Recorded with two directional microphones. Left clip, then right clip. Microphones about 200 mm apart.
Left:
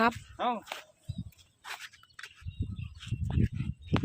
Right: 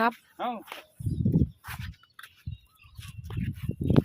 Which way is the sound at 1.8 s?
15° left (ahead or behind).